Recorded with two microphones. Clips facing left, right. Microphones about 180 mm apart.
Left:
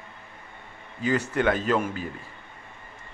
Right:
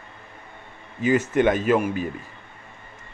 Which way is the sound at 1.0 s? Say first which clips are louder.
Right 5 dB; 20° right (ahead or behind).